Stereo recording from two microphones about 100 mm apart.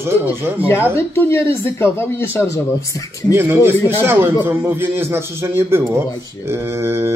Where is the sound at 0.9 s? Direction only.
25° left (ahead or behind).